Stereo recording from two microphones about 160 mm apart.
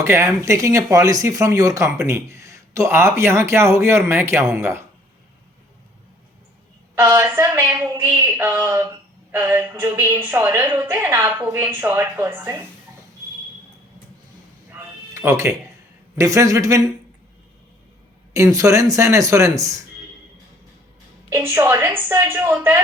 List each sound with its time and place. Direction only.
0.0 s speech: 15° right (ahead or behind)
7.0 s speech: 15° right (ahead or behind)
14.7 s music: 15° right (ahead or behind)
16.1 s speech: 20° right (ahead or behind)
18.3 s speech: 20° right (ahead or behind)
21.2 s speech: 15° right (ahead or behind)